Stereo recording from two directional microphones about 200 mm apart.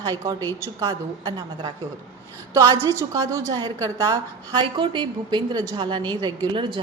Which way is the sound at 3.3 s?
20° right (ahead or behind).